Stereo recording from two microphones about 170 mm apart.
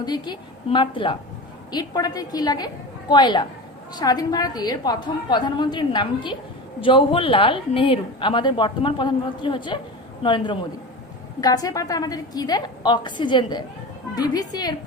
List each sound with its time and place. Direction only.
0.0 s speech: 25° left (ahead or behind)